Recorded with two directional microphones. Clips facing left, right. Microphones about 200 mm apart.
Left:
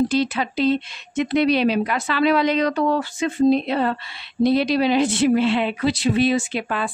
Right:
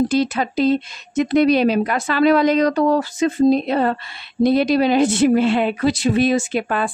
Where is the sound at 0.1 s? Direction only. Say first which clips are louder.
Right 3 dB; 45° right (ahead or behind).